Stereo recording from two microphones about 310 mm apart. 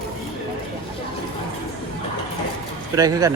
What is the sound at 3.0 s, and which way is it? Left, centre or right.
Speech, centre.